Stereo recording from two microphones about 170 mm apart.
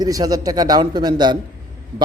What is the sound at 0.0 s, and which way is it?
A man's voice, 20° right (ahead or behind).